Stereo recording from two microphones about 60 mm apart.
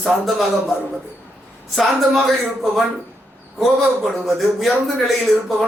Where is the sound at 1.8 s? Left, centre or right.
Centre.